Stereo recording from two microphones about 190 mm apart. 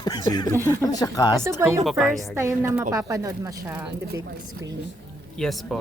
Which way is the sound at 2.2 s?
15° right (ahead or behind).